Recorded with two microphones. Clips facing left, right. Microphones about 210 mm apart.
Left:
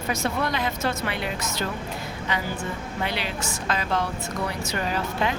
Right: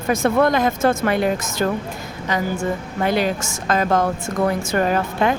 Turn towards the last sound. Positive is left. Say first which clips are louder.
# right 7 dB
turn(degrees=-50)  # may be behind; listen again after turning